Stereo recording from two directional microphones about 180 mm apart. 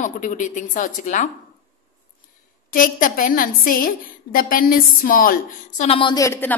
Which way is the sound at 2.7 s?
50° left (ahead or behind).